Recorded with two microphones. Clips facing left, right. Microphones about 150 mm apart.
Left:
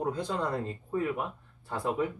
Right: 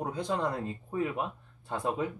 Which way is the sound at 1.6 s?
20° right (ahead or behind).